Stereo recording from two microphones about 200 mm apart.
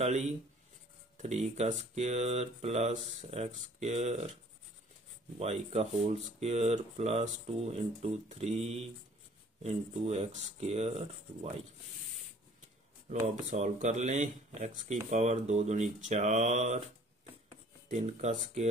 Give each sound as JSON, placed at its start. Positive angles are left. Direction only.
{"t": 0.0, "sound": "speech", "side_deg": -35}
{"t": 5.4, "sound": "speech", "side_deg": -35}
{"t": 13.1, "sound": "speech", "side_deg": -35}
{"t": 17.8, "sound": "speech", "side_deg": -35}